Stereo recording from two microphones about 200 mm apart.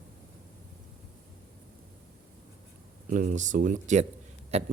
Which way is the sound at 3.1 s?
40° right (ahead or behind).